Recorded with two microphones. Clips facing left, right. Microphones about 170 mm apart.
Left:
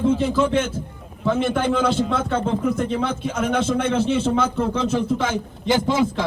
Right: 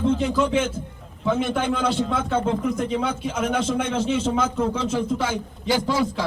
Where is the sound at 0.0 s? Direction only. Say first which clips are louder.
Left 2 dB; 5° left (ahead or behind).